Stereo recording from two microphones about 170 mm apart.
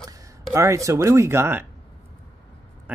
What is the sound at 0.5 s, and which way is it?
Speech, 20° right (ahead or behind).